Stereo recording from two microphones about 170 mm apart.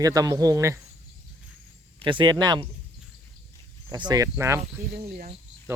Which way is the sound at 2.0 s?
30° right (ahead or behind).